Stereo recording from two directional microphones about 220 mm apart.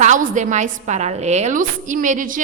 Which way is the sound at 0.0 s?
35° right (ahead or behind).